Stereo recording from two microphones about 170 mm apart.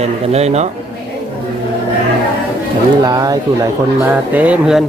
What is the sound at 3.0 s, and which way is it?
Speech, 20° right (ahead or behind).